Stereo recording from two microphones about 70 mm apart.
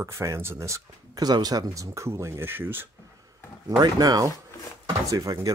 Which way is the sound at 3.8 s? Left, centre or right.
Right.